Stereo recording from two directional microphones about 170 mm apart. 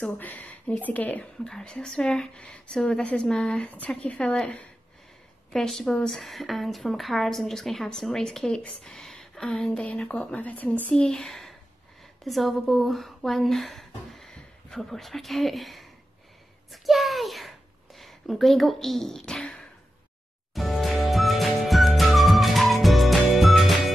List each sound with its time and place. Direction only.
0.0 s a woman's voice: 10° left (ahead or behind)
20.5 s music: centre (ahead or behind)